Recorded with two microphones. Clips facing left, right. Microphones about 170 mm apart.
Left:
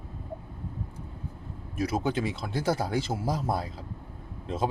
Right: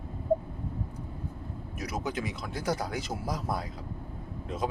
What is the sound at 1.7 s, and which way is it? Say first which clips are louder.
Speech: left 6 dB; 30° left (ahead or behind).